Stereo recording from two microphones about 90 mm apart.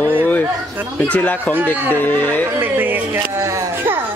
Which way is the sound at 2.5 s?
20° right (ahead or behind).